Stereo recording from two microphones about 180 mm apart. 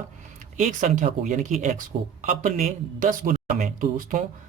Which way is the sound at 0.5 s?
45° right (ahead or behind).